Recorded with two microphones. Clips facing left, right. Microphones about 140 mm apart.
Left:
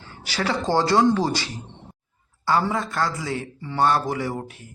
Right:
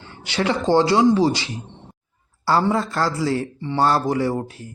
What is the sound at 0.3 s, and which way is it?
Speech, 25° right (ahead or behind).